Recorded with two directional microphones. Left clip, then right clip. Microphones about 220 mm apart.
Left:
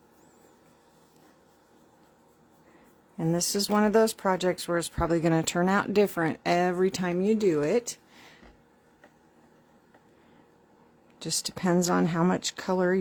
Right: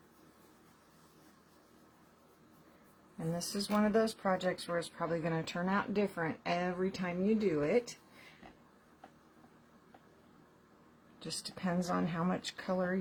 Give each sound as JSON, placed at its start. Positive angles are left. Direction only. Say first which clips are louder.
{"t": 3.3, "sound": "speech", "louder": "left 9 dB", "side_deg": 55}
{"t": 11.2, "sound": "speech", "louder": "left 10 dB", "side_deg": 50}